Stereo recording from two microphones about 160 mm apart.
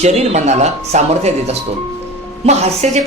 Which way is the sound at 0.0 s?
40° right (ahead or behind).